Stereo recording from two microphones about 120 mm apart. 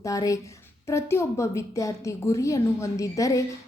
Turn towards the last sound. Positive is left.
turn(degrees=25)  # may be behind; listen again after turning